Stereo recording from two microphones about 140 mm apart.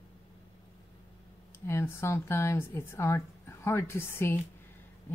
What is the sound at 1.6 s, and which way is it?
Speech, 20° left (ahead or behind).